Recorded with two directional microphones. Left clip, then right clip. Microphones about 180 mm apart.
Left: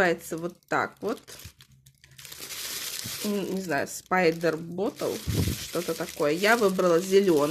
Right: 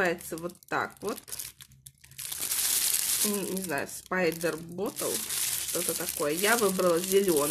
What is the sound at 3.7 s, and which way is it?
Speech, 30° left (ahead or behind).